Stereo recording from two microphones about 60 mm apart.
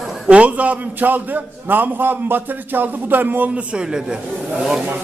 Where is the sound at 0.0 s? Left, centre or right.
Centre.